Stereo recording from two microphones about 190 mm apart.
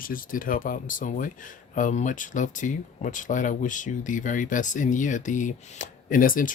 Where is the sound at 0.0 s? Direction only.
50° left (ahead or behind).